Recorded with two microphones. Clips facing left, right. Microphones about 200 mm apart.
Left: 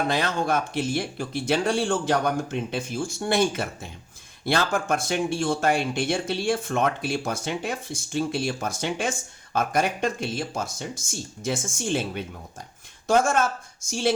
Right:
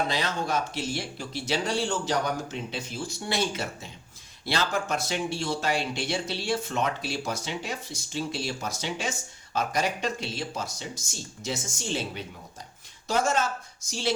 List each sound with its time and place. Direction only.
0.1 s speech: 55° left (ahead or behind)